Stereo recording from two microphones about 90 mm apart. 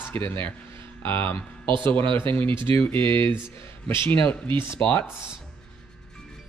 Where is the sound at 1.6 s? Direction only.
65° right (ahead or behind).